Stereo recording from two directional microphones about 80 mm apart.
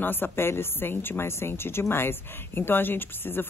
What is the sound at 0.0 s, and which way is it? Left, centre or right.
Speech, left.